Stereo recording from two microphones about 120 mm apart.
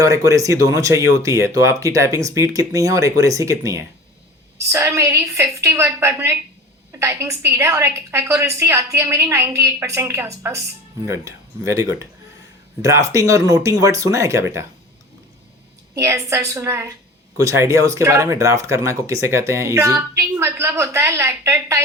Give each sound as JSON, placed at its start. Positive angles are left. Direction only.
{"t": 0.0, "sound": "speech", "side_deg": -25}
{"t": 16.0, "sound": "speech", "side_deg": -25}